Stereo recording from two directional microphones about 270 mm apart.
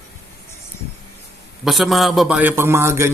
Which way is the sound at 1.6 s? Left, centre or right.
Centre.